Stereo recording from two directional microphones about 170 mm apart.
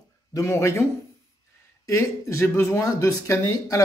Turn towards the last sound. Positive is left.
turn(degrees=20)  # may be behind; listen again after turning